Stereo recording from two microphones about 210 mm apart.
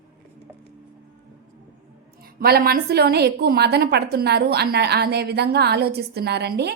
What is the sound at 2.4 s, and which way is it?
A woman's voice, 45° right (ahead or behind).